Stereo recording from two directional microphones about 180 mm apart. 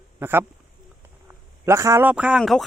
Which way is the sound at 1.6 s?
15° right (ahead or behind).